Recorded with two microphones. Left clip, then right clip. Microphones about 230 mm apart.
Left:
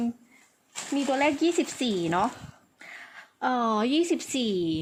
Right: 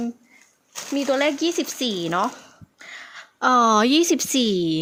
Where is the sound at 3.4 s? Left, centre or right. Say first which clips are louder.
Right 9 dB; right.